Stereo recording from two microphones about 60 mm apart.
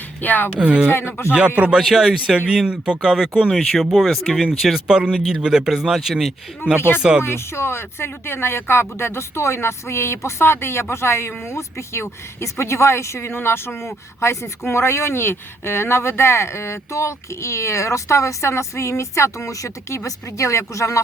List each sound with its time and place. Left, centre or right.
0.2 s speech: left
0.5 s speech: right
0.9 s speech: left
1.3 s speech: right
1.8 s speech: centre
2.0 s speech: centre
3.5 s speech: centre
4.9 s speech: centre
6.7 s speech: left